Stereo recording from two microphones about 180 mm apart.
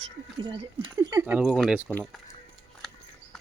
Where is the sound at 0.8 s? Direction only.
20° right (ahead or behind).